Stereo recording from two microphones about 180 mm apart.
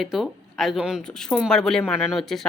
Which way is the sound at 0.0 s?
Centre (ahead or behind).